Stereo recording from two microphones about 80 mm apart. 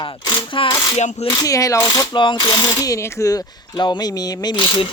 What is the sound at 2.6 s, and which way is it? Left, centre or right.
Speech, left.